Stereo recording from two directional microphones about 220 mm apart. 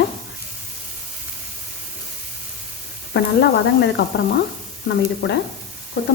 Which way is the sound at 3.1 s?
50° left (ahead or behind).